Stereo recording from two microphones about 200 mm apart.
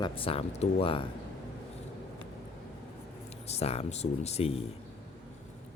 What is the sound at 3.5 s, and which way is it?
Speech, 30° left (ahead or behind).